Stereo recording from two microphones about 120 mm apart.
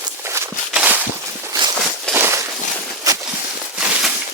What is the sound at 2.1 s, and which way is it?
Walk, 20° right (ahead or behind).